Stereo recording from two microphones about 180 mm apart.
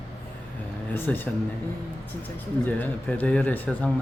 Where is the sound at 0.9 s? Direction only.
10° left (ahead or behind).